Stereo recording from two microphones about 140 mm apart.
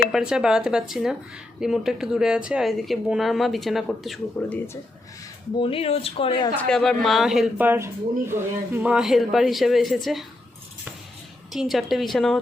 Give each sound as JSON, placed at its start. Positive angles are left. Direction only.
{"t": 0.1, "sound": "speech", "side_deg": -5}
{"t": 4.4, "sound": "speech", "side_deg": 15}
{"t": 5.5, "sound": "speech", "side_deg": 40}
{"t": 6.6, "sound": "speech", "side_deg": 5}
{"t": 7.6, "sound": "speech", "side_deg": -15}
{"t": 11.5, "sound": "speech", "side_deg": 0}